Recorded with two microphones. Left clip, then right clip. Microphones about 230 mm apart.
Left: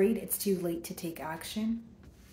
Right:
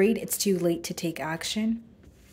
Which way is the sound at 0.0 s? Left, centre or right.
Right.